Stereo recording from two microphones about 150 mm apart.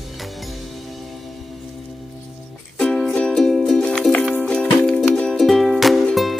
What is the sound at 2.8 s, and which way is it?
Music, 5° left (ahead or behind).